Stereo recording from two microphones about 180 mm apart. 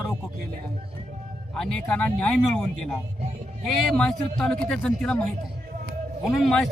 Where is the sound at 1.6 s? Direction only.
5° left (ahead or behind).